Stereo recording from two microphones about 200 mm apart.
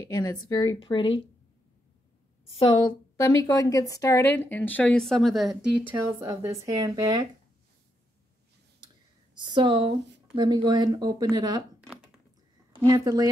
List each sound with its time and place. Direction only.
0.1 s a woman's voice: 20° left (ahead or behind)
2.5 s a woman's voice: 25° left (ahead or behind); by 7.2 s 20° right (ahead or behind)
8.8 s a sound: 20° right (ahead or behind)
10.3 s speech: 20° right (ahead or behind)
11.9 s a sound: 5° right (ahead or behind)
12.8 s speech: 20° right (ahead or behind)